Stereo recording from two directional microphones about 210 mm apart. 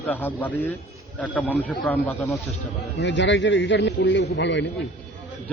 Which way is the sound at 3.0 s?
60° left (ahead or behind).